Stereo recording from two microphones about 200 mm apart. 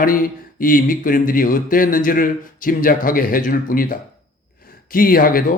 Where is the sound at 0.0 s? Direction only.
45° left (ahead or behind).